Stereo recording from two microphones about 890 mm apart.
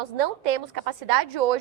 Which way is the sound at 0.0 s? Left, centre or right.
Right.